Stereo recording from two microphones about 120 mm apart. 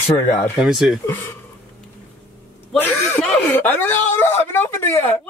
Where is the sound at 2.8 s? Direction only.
15° left (ahead or behind).